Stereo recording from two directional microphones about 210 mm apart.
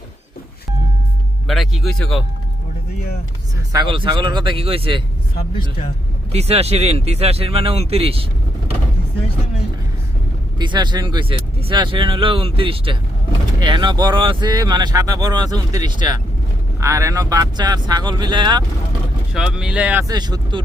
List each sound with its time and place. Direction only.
1.5 s speech: centre (ahead or behind)
3.7 s speech: 20° right (ahead or behind)
6.3 s speech: 30° right (ahead or behind)
10.6 s speech: 20° right (ahead or behind)
19.3 s speech: 5° right (ahead or behind); by 20.7 s 20° right (ahead or behind)